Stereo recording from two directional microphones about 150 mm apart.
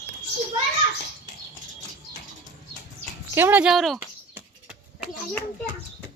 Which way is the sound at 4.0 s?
10° right (ahead or behind).